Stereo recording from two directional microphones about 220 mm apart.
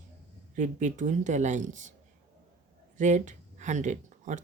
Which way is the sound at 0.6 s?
35° right (ahead or behind).